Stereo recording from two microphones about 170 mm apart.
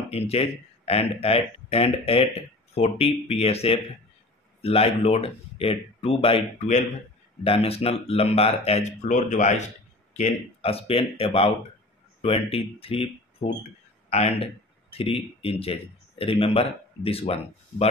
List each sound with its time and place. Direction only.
0.1 s speech: 35° left (ahead or behind)